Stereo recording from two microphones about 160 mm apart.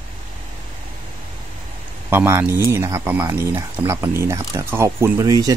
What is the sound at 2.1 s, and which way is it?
Speech, 15° right (ahead or behind).